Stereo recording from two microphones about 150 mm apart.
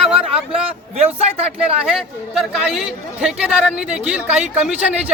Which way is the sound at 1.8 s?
Centre (ahead or behind).